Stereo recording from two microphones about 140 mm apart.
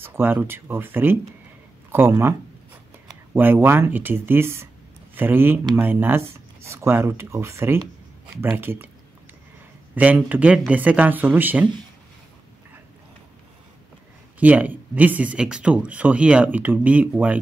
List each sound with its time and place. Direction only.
0.0 s speech: 15° right (ahead or behind)
3.3 s speech: 15° right (ahead or behind)
9.9 s speech: 10° right (ahead or behind)
14.4 s speech: 10° right (ahead or behind)